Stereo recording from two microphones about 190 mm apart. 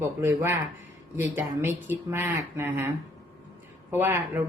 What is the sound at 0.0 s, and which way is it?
Speech, 15° right (ahead or behind).